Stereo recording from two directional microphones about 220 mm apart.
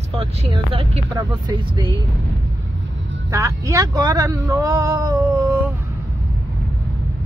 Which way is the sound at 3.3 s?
15° right (ahead or behind).